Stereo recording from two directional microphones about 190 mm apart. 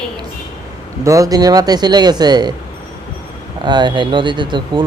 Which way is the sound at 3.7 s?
25° right (ahead or behind).